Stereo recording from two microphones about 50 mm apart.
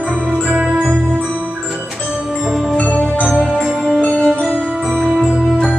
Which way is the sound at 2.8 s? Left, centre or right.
Left.